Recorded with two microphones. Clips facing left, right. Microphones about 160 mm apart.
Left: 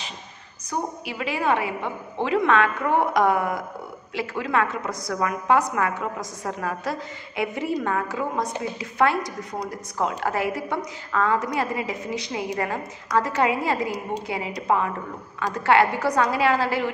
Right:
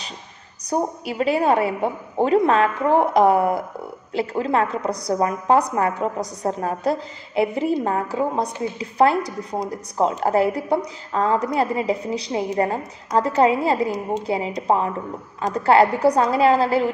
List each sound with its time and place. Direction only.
0.7 s a woman's voice: 35° right (ahead or behind)